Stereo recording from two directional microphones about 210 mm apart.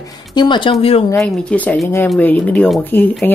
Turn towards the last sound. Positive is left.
turn(degrees=10)  # may be behind; listen again after turning